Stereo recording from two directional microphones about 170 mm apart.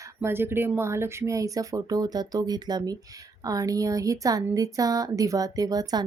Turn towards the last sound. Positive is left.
turn(degrees=-20)  # may be behind; listen again after turning